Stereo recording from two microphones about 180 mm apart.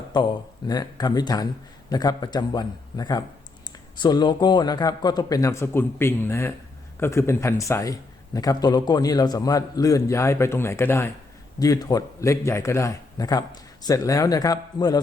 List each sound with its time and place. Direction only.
0.1 s a man's voice: 25° left (ahead or behind)